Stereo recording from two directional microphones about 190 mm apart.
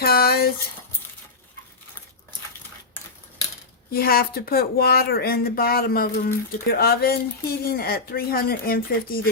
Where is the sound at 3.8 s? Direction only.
55° left (ahead or behind).